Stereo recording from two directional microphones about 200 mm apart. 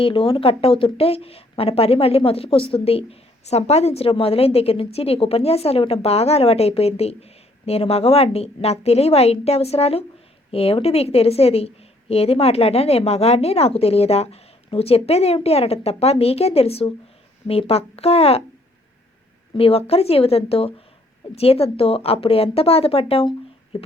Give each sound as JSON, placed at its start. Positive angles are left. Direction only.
{"t": 0.0, "sound": "a woman's voice", "side_deg": 25}
{"t": 19.5, "sound": "speech", "side_deg": 30}